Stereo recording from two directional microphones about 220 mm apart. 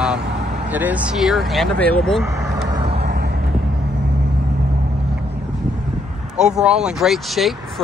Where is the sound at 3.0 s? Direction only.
45° right (ahead or behind).